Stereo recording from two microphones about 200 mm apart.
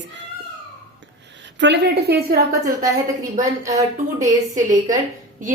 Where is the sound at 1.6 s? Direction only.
60° right (ahead or behind).